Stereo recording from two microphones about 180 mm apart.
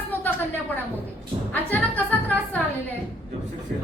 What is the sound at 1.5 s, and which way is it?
A woman's voice, 10° left (ahead or behind).